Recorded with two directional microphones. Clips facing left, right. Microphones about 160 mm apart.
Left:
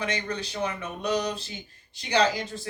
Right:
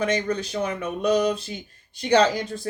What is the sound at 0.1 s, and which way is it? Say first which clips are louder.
Speech: right 7 dB; 45° right (ahead or behind).